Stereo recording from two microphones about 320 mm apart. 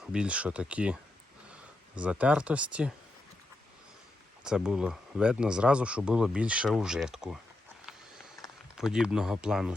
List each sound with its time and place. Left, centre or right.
0.0 s speech: centre
2.0 s speech: centre
4.4 s speech: centre
8.7 s speech: centre